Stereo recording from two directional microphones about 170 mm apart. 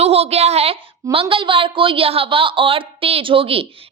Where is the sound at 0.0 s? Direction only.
35° right (ahead or behind).